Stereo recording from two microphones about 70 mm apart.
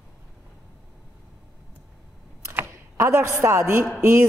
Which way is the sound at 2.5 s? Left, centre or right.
Right.